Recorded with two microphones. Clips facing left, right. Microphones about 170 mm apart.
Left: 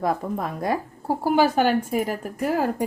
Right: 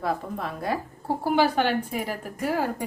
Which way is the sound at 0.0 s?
40° left (ahead or behind).